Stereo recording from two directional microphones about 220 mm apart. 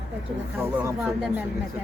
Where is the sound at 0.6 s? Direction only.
10° right (ahead or behind).